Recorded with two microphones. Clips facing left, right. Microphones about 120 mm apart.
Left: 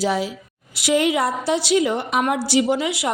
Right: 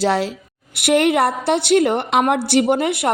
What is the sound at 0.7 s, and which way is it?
A woman's voice, 60° right (ahead or behind).